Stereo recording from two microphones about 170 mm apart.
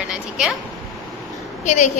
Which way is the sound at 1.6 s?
45° left (ahead or behind).